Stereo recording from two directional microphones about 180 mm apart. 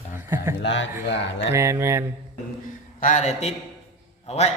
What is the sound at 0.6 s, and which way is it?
Speech, 90° left.